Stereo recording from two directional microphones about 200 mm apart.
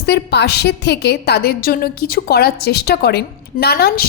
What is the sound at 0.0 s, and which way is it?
A woman's voice, 55° left (ahead or behind).